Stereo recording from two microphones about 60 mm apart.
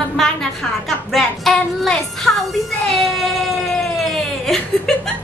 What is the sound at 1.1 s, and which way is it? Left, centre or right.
A woman's voice, centre.